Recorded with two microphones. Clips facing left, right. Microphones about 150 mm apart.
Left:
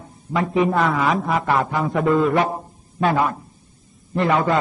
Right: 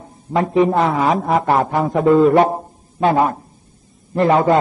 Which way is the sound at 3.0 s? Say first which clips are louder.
Right 4 dB; 25° right (ahead or behind).